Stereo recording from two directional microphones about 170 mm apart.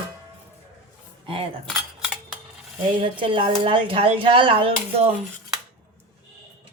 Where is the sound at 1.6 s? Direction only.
Centre (ahead or behind).